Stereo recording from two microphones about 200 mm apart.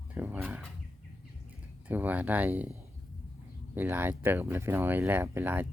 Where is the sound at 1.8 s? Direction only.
10° right (ahead or behind).